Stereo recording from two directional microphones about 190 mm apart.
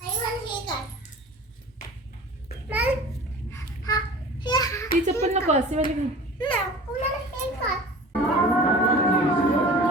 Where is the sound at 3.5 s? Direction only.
20° left (ahead or behind).